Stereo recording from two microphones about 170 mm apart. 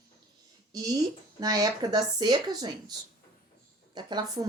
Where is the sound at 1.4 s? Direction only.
20° right (ahead or behind).